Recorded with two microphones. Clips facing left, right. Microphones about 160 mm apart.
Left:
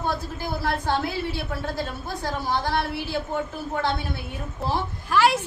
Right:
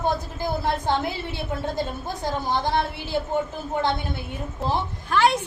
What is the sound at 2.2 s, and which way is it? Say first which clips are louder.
Speech: right 2 dB; 20° right (ahead or behind).